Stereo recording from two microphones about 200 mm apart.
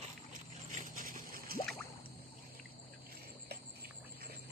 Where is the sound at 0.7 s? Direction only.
40° right (ahead or behind).